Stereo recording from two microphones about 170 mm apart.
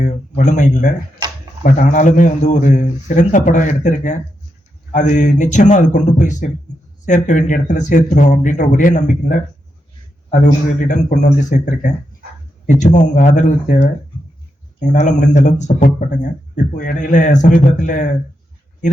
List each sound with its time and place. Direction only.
0.3 s a man's voice: 45° left (ahead or behind)
10.4 s a man's voice: 45° left (ahead or behind)
14.8 s a man's voice: 45° left (ahead or behind)